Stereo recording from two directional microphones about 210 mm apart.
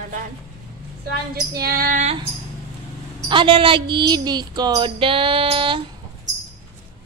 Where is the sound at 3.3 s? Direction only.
25° right (ahead or behind).